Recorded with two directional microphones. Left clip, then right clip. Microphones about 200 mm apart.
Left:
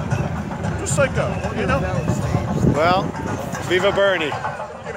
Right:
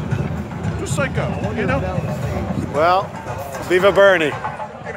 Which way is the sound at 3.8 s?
40° right (ahead or behind).